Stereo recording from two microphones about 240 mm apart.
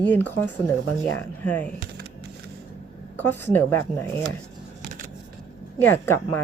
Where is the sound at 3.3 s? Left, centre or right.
Centre.